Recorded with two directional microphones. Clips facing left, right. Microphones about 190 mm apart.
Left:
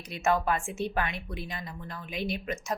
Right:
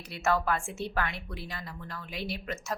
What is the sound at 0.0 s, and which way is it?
A woman's voice, 15° left (ahead or behind).